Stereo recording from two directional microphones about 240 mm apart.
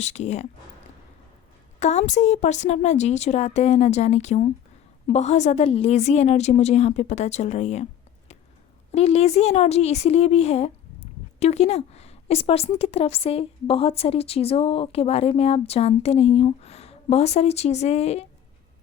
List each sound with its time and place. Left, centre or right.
0.0 s speech: left
1.8 s speech: left
8.9 s speech: left